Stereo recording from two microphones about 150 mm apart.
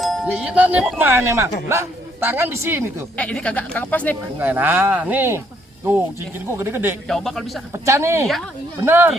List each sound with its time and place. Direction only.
0.3 s speech: 5° right (ahead or behind)
3.2 s speech: 10° left (ahead or behind)
4.4 s speech: 10° right (ahead or behind)
7.1 s speech: centre (ahead or behind)
7.7 s speech: 20° right (ahead or behind)